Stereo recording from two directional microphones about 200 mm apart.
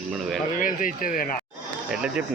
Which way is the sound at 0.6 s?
40° left (ahead or behind).